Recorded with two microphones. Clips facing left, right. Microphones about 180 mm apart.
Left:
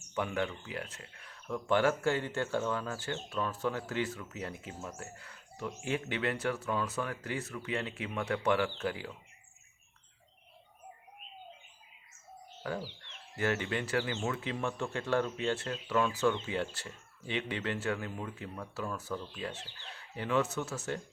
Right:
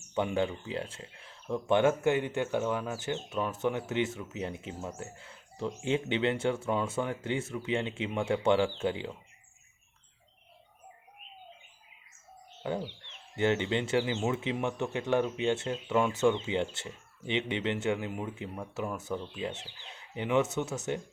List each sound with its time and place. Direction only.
0.1 s speech: 25° right (ahead or behind)
12.7 s speech: 25° right (ahead or behind)